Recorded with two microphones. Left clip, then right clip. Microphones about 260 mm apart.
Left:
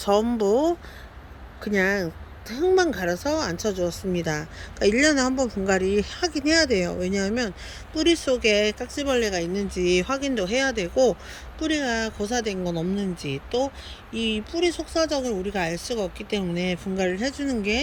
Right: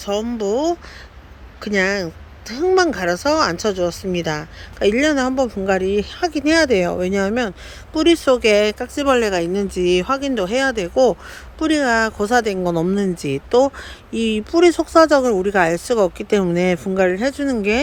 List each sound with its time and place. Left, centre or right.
0.0 s speech: centre